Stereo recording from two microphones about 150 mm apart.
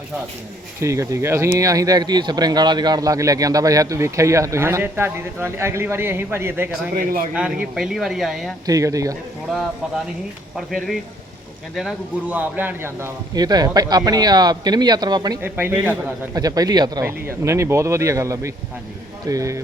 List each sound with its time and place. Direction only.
0.8 s speech: 20° right (ahead or behind)
6.9 s a man's voice: 70° right (ahead or behind)
7.3 s speech: 10° right (ahead or behind)
8.6 s speech: 20° right (ahead or behind)
10.5 s speech: centre (ahead or behind)
12.3 s speech: 10° right (ahead or behind)
15.4 s speech: 15° right (ahead or behind)
16.3 s speech: 25° right (ahead or behind)
17.1 s speech: 15° right (ahead or behind)